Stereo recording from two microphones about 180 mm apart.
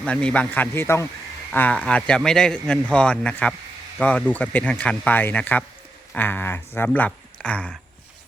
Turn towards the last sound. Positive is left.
turn(degrees=10)  # may be behind; listen again after turning